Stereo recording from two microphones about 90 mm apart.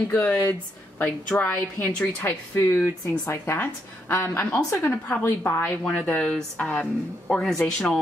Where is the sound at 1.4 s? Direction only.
15° left (ahead or behind).